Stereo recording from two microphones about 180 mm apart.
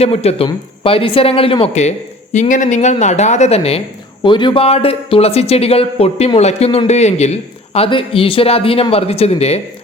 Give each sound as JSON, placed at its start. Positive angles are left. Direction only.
{"t": 0.0, "sound": "speech", "side_deg": 35}